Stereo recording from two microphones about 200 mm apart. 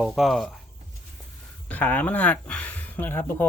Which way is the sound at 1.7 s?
10° left (ahead or behind).